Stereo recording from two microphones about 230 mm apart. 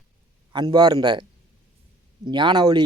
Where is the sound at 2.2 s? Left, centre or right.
Centre.